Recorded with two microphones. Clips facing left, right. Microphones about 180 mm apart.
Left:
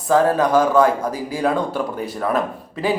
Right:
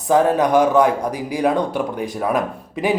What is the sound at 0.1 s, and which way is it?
Speech, 15° right (ahead or behind).